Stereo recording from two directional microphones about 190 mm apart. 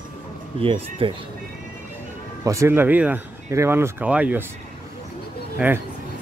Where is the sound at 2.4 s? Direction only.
15° right (ahead or behind).